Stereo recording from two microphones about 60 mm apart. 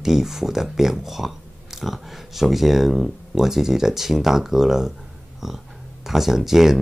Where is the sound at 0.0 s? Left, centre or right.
Centre.